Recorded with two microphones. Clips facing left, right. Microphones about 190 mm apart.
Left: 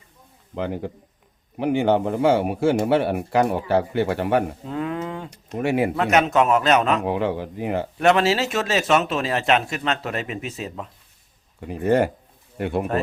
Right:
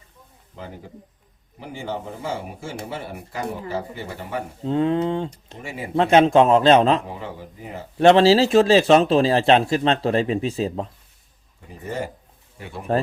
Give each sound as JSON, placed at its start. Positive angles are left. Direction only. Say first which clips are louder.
{"t": 0.5, "sound": "a man's voice", "louder": "left 10 dB", "side_deg": 70}
{"t": 4.6, "sound": "a man's voice", "louder": "right 7 dB", "side_deg": -25}
{"t": 5.5, "sound": "a man's voice", "louder": "left 13 dB", "side_deg": 70}
{"t": 6.0, "sound": "a man's voice", "louder": "right 8 dB", "side_deg": -30}
{"t": 7.0, "sound": "a man's voice", "louder": "left 11 dB", "side_deg": 75}
{"t": 7.9, "sound": "speech", "louder": "right 6 dB", "side_deg": -30}
{"t": 11.6, "sound": "a man's voice", "louder": "left 10 dB", "side_deg": 70}